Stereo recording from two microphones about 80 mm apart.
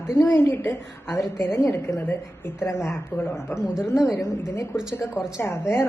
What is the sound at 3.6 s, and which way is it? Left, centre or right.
Speech, centre.